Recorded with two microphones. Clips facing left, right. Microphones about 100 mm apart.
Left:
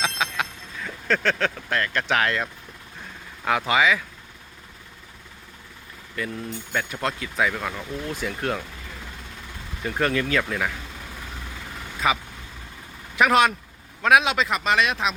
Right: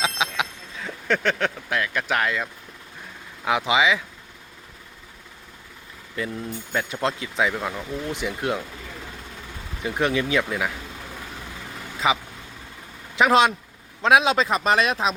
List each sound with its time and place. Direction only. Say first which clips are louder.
0.0 s a sound: right 1 dB; 20° right (ahead or behind)
0.9 s speech: even; 15° right (ahead or behind)
3.4 s speech: even; 15° right (ahead or behind)
6.1 s speech: right 1 dB; 20° right (ahead or behind)
9.8 s speech: right 1 dB; 15° right (ahead or behind)
12.0 s speech: right 1 dB; 20° right (ahead or behind)